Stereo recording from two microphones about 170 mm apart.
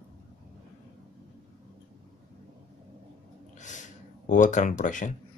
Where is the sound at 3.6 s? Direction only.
45° left (ahead or behind).